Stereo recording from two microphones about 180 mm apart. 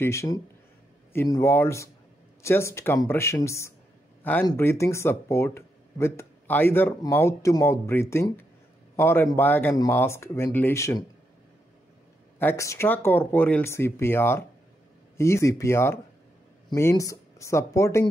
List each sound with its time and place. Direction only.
0.0 s speech: 15° left (ahead or behind)
12.4 s speech: 15° left (ahead or behind)